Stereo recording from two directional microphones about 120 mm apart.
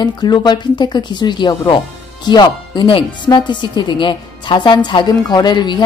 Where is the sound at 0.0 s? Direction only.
35° left (ahead or behind).